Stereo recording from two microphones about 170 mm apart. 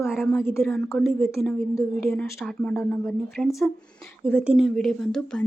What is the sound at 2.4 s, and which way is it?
A woman's voice, centre (ahead or behind).